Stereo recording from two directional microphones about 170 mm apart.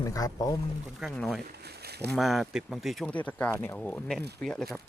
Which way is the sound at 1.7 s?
70° right (ahead or behind).